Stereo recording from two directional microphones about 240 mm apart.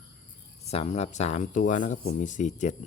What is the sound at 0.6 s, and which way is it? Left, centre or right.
Speech, left.